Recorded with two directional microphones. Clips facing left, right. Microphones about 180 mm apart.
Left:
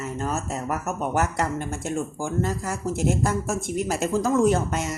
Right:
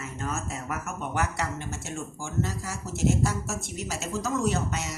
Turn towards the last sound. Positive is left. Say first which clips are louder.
# left 6 dB
turn(degrees=50)  # may be behind; listen again after turning